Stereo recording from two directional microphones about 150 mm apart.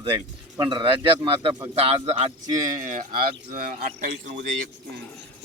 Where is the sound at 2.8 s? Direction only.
60° right (ahead or behind); by 4.5 s 80° right.